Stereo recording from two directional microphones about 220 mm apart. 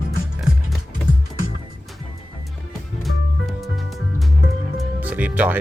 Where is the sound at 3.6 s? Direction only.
Centre (ahead or behind).